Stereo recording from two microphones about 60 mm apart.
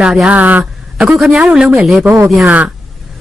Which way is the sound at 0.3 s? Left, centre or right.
Right.